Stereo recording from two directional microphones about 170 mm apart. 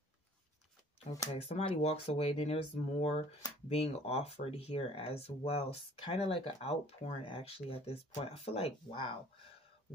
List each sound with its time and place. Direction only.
1.3 s speech: 40° left (ahead or behind)